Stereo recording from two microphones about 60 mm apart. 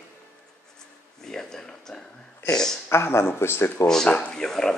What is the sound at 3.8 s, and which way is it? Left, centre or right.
Speech, centre.